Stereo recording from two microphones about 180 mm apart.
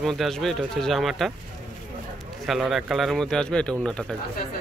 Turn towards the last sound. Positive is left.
turn(degrees=5)  # may be behind; listen again after turning